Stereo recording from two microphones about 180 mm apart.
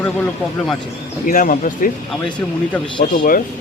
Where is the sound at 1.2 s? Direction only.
50° left (ahead or behind).